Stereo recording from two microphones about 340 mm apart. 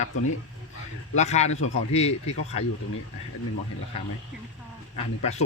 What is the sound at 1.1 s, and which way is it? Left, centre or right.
Speech, centre.